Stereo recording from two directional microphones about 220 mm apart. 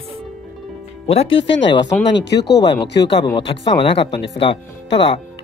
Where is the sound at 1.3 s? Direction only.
55° left (ahead or behind).